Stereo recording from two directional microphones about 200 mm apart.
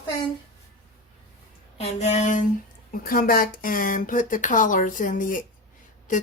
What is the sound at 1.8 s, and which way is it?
Speech, 35° left (ahead or behind).